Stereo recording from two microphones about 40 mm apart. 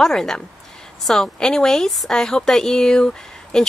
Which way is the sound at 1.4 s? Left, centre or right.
Centre.